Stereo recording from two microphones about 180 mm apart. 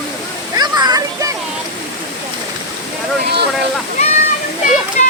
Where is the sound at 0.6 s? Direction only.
20° right (ahead or behind).